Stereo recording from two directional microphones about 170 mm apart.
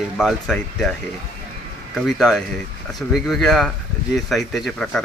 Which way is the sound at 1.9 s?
Centre (ahead or behind).